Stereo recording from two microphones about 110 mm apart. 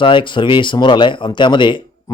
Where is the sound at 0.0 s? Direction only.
50° left (ahead or behind).